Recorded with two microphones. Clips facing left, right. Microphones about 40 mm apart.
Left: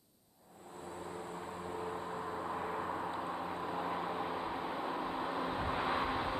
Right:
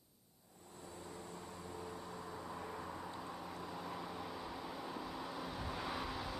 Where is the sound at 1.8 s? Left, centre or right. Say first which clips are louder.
Left 8 dB; left.